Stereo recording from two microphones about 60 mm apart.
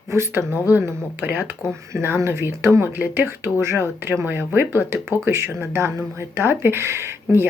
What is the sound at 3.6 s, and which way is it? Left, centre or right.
Speech, right.